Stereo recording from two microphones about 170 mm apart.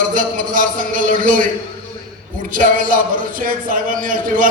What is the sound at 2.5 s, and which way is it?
A man's voice, 55° right (ahead or behind).